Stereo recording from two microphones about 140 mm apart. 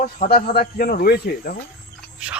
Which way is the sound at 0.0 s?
85° left.